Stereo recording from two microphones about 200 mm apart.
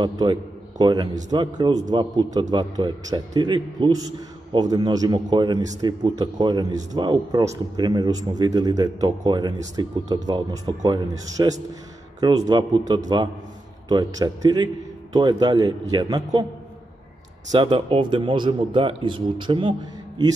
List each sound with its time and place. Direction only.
0.0 s a man's voice: 20° right (ahead or behind)
17.5 s speech: 25° right (ahead or behind)